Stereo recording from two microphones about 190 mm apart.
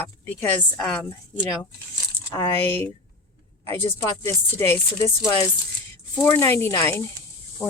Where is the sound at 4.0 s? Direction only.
15° left (ahead or behind).